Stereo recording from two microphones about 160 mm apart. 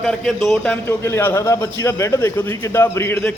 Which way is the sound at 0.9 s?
15° left (ahead or behind).